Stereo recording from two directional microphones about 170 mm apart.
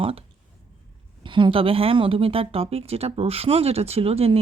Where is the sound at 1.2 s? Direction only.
30° right (ahead or behind).